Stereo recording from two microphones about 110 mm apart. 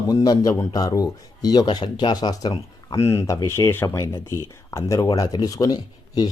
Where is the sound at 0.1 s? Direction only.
35° left (ahead or behind).